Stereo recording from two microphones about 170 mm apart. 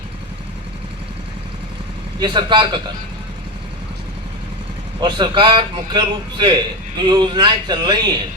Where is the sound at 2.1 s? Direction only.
25° right (ahead or behind).